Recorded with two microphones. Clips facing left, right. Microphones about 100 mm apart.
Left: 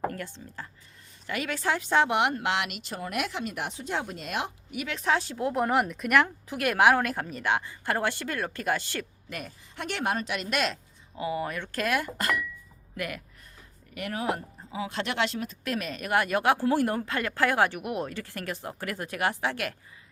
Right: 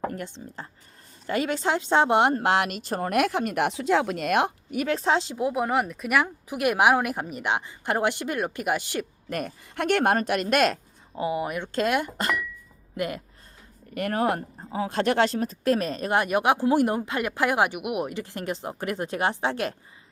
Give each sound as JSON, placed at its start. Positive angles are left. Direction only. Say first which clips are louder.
{"t": 0.1, "sound": "a woman's voice", "louder": "right 3 dB", "side_deg": -20}
{"t": 5.5, "sound": "speech", "louder": "left 1 dB", "side_deg": 0}
{"t": 9.3, "sound": "a woman's voice", "louder": "right 8 dB", "side_deg": -55}
{"t": 11.1, "sound": "a woman's voice", "louder": "right 4 dB", "side_deg": -25}
{"t": 13.9, "sound": "a woman's voice", "louder": "right 6 dB", "side_deg": -50}